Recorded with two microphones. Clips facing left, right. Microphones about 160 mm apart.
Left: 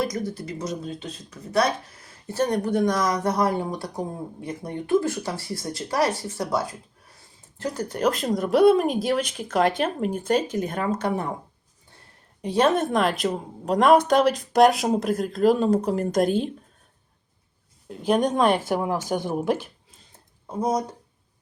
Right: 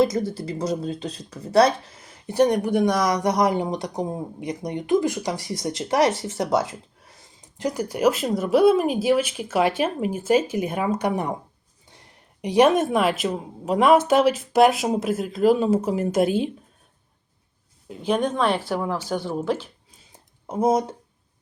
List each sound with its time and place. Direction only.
0.0 s speech: 25° right (ahead or behind)
2.0 s speech: 20° right (ahead or behind)
17.8 s speech: centre (ahead or behind)
18.2 s a woman's voice: 40° left (ahead or behind)
18.7 s speech: 15° left (ahead or behind)
20.5 s speech: 25° right (ahead or behind)